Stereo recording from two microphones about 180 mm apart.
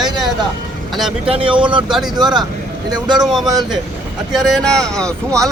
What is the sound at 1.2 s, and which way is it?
Speech, 30° right (ahead or behind).